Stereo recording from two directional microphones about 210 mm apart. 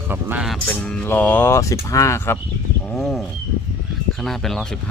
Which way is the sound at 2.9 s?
Centre (ahead or behind).